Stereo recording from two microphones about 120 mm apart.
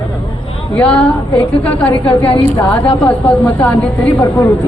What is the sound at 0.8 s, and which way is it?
A woman's voice, 10° left (ahead or behind).